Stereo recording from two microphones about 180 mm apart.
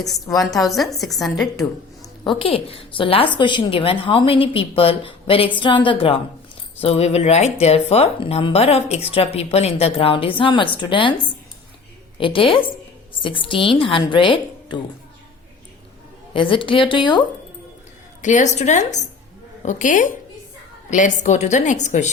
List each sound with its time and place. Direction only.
0.3 s a woman's voice: centre (ahead or behind)
1.5 s a woman's voice: 25° left (ahead or behind)
16.3 s a woman's voice: 30° left (ahead or behind)
18.2 s a woman's voice: 40° left (ahead or behind)